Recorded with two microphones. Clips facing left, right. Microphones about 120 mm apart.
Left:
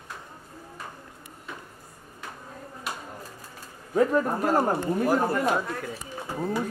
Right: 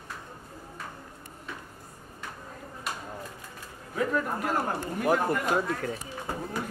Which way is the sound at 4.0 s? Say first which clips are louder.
Left 6 dB; 35° left (ahead or behind).